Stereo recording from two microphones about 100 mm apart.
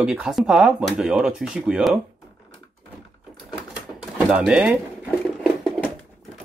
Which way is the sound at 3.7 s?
5° right (ahead or behind).